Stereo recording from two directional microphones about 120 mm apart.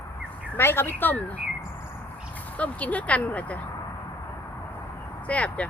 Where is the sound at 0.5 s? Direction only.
20° left (ahead or behind).